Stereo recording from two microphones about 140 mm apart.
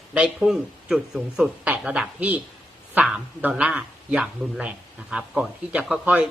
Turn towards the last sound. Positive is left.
turn(degrees=-5)  # may be behind; listen again after turning